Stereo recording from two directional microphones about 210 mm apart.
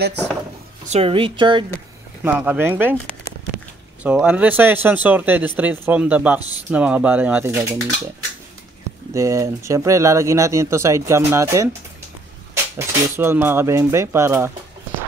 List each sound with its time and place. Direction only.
0.8 s speech: 30° right (ahead or behind)
2.2 s speech: 10° right (ahead or behind)
4.0 s speech: 5° right (ahead or behind)
9.1 s speech: 15° right (ahead or behind)
12.7 s speech: 10° right (ahead or behind)